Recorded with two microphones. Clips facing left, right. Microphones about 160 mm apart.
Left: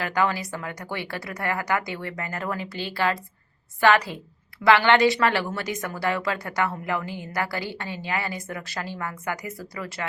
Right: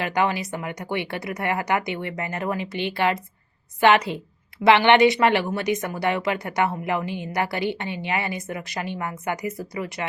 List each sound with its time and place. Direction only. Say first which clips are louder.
0.0 s speech: right 1 dB; 20° right (ahead or behind)